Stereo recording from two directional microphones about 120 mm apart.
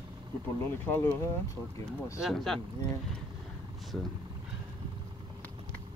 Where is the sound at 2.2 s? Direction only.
Centre (ahead or behind).